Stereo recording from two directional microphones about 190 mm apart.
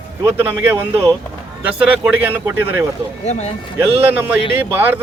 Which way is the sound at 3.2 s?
35° left (ahead or behind).